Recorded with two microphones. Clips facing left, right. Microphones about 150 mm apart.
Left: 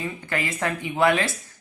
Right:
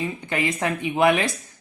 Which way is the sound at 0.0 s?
20° right (ahead or behind).